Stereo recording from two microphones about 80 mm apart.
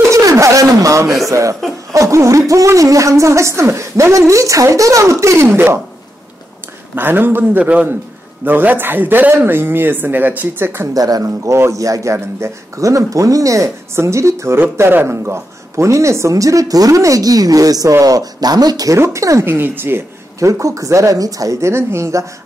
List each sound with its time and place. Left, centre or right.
0.1 s a sound: right
1.3 s speech: right
7.0 s a man's voice: right
11.0 s speech: right
11.2 s speech: right
18.9 s speech: right
19.4 s a man's voice: right
20.3 s speech: right